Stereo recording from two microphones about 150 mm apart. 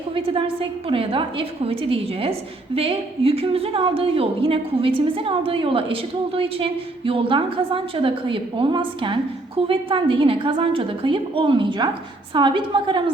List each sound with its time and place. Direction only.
0.9 s a woman's voice: 35° right (ahead or behind)